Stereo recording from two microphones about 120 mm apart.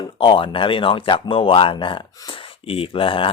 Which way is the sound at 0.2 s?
45° left (ahead or behind).